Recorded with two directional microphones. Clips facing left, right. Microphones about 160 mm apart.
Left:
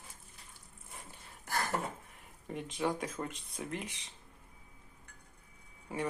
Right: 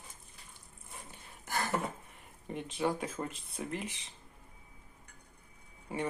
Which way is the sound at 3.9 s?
30° right (ahead or behind).